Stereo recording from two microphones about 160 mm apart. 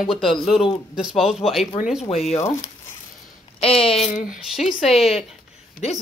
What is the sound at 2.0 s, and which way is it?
Speech, 40° left (ahead or behind).